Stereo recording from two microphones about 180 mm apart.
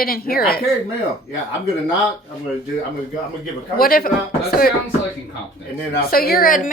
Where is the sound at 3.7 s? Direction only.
55° left (ahead or behind).